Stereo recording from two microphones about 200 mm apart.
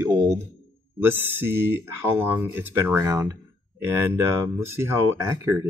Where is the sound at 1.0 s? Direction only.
10° right (ahead or behind).